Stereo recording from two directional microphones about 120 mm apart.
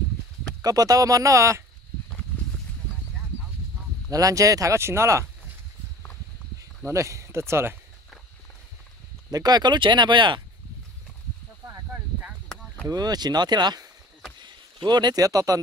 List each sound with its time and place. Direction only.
0.6 s speech: 30° right (ahead or behind)
4.1 s speech: 30° right (ahead or behind)
6.9 s speech: 25° right (ahead or behind)
9.3 s speech: 35° right (ahead or behind)
12.5 s a sound: 5° left (ahead or behind)
12.8 s speech: 35° right (ahead or behind)